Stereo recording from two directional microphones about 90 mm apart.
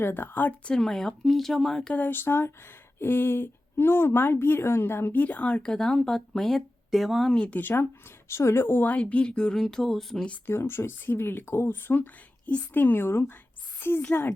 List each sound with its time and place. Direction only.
0.0 s speech: 25° left (ahead or behind); by 1.9 s 5° left (ahead or behind)
1.9 s speech: 20° left (ahead or behind); by 7.3 s centre (ahead or behind)
7.3 s speech: 15° left (ahead or behind)
10.2 s speech: 15° left (ahead or behind)
10.5 s speech: 30° left (ahead or behind)
13.7 s a sound: 25° left (ahead or behind)
14.1 s speech: 25° left (ahead or behind)